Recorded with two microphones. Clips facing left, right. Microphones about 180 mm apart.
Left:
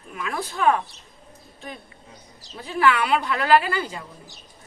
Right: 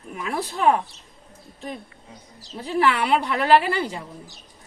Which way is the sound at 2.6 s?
30° right (ahead or behind).